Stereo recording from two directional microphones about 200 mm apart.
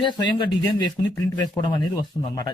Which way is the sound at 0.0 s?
20° left (ahead or behind).